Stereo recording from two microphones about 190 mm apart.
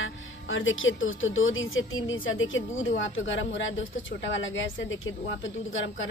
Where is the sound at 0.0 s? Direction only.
90° left.